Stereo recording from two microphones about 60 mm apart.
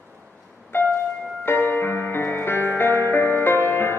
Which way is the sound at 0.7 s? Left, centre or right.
Left.